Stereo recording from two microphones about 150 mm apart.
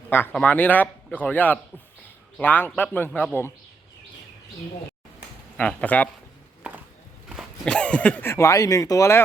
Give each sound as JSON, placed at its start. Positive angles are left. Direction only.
{"t": 0.1, "sound": "speech", "side_deg": 15}
{"t": 5.5, "sound": "speech", "side_deg": 10}
{"t": 7.3, "sound": "speech", "side_deg": 5}